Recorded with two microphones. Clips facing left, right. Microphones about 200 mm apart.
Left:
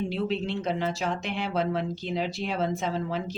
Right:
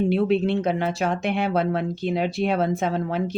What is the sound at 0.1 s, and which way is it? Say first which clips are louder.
Speech: right 8 dB; 60° right (ahead or behind).